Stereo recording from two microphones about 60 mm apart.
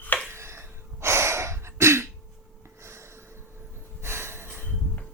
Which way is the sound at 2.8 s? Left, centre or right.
Right.